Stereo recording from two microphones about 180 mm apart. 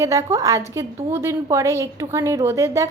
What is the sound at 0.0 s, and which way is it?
A woman's voice, 15° right (ahead or behind).